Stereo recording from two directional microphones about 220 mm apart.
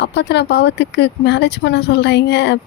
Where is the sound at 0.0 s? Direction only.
50° left (ahead or behind).